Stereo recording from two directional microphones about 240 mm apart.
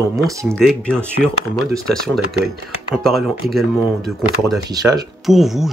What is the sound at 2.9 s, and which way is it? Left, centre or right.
Speech, centre.